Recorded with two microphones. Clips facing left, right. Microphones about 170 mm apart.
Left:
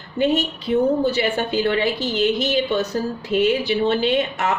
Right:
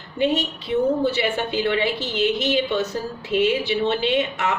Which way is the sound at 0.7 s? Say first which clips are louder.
Left 2 dB; 40° left (ahead or behind).